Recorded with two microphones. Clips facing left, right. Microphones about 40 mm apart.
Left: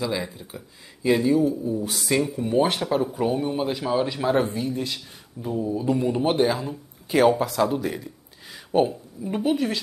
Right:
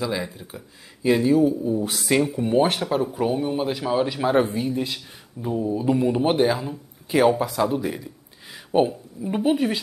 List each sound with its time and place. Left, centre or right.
0.0 s speech: centre
1.4 s speech: centre
2.8 s speech: centre